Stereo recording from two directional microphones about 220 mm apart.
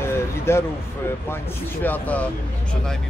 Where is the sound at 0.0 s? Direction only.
10° left (ahead or behind).